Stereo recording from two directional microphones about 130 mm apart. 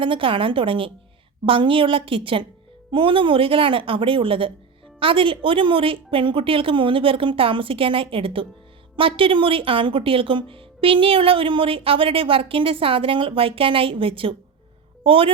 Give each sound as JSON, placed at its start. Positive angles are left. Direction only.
{"t": 0.0, "sound": "a woman's voice", "side_deg": -40}